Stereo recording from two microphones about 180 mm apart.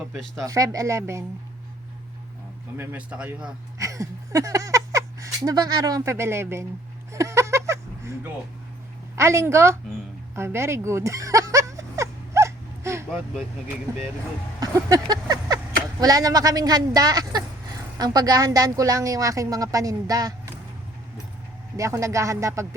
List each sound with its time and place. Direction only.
0.1 s speech: centre (ahead or behind)
0.4 s speech: 20° right (ahead or behind)
2.7 s speech: 5° right (ahead or behind)
3.8 s speech: 15° right (ahead or behind)
7.1 s a sound: 15° right (ahead or behind)
9.1 s speech: 15° right (ahead or behind)
10.3 s a sound: 15° right (ahead or behind)
13.9 s speech: 20° right (ahead or behind)
21.8 s speech: 15° right (ahead or behind)